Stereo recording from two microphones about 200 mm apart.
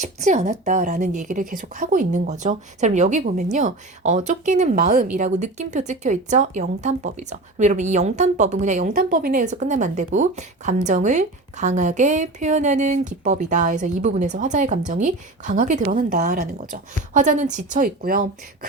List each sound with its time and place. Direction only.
0.0 s speech: 35° right (ahead or behind)